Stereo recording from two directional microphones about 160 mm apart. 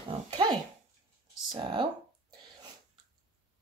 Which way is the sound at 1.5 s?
30° right (ahead or behind).